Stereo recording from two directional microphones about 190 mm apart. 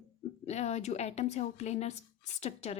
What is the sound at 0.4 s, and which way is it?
Speech, 35° left (ahead or behind).